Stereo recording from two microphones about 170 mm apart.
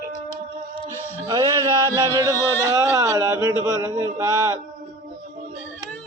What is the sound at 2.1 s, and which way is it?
Speech, 20° right (ahead or behind).